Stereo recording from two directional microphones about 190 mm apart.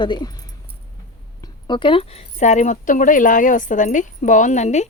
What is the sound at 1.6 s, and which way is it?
Speech, 25° left (ahead or behind).